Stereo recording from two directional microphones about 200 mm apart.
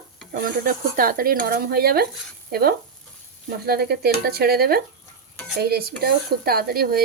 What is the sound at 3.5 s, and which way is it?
Speech, 50° right (ahead or behind).